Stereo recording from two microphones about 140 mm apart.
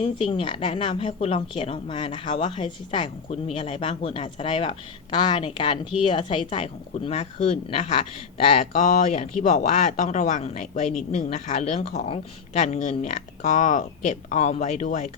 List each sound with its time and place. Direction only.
0.0 s a woman's voice: 40° left (ahead or behind); by 11.8 s 55° left (ahead or behind)
11.8 s speech: 45° left (ahead or behind); by 15.1 s 60° left (ahead or behind)